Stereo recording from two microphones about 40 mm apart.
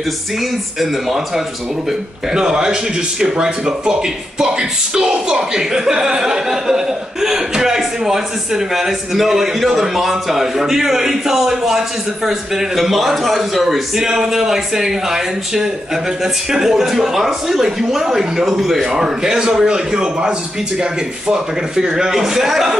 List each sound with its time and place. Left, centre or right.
0.7 s a man's voice: centre
18.9 s a man's voice: centre